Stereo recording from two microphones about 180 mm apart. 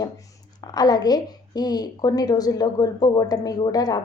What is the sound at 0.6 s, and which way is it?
A woman's voice, 20° left (ahead or behind).